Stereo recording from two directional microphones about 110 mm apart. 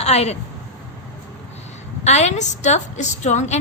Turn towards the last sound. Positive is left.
turn(degrees=90)